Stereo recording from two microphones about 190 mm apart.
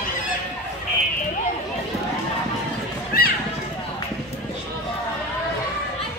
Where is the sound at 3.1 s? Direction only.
50° left (ahead or behind).